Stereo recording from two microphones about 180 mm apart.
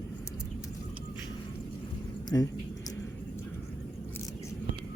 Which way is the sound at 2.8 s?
15° left (ahead or behind).